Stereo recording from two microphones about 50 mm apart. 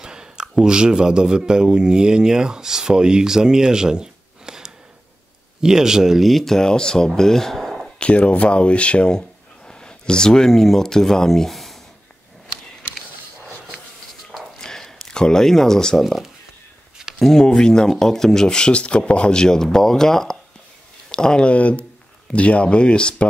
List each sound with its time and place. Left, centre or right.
0.0 s speech: centre
8.0 s speech: left; by 11.8 s centre
14.6 s a sound: centre
16.0 s speech: centre
17.2 s speech: centre